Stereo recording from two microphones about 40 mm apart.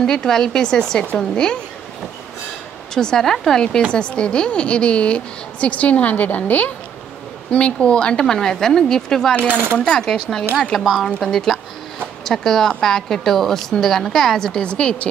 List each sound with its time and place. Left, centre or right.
0.0 s a woman's voice: centre
2.9 s a woman's voice: centre
3.9 s a woman's voice: left
7.5 s a woman's voice: left
9.5 s coin: right
9.8 s a woman's voice: centre
10.8 s speech: centre
11.1 s a woman's voice: centre
14.5 s a woman's voice: left